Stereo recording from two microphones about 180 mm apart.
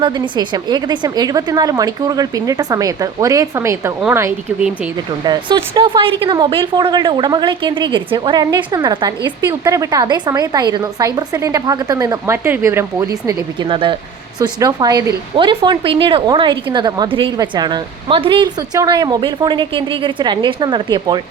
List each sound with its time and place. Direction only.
0.0 s speech: 25° right (ahead or behind)
5.2 s speech: 25° right (ahead or behind)